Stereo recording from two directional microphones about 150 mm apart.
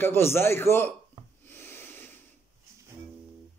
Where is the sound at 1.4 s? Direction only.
15° left (ahead or behind).